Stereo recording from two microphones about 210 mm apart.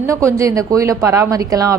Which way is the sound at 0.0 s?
15° right (ahead or behind).